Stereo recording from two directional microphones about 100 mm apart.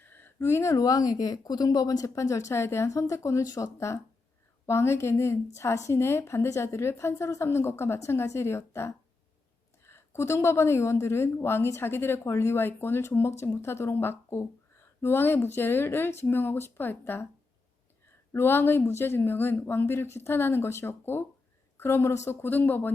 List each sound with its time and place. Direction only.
0.0 s a woman's voice: 20° left (ahead or behind)
18.3 s a woman's voice: 25° left (ahead or behind)